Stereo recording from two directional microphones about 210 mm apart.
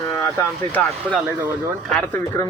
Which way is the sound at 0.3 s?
5° left (ahead or behind).